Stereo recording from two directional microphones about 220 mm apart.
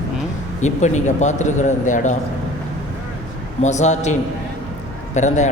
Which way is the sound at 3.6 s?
30° left (ahead or behind).